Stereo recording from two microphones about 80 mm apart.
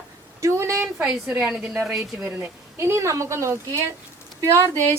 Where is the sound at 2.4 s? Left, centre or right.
Right.